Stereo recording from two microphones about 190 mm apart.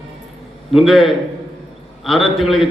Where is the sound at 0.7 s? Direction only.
Centre (ahead or behind).